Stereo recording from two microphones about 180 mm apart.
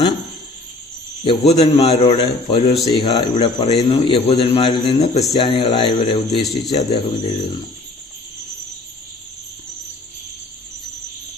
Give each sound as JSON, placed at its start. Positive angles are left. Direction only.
{"t": 1.2, "sound": "a man's voice", "side_deg": 30}